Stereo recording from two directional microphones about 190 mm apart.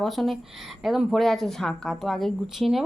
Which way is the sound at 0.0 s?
Centre (ahead or behind).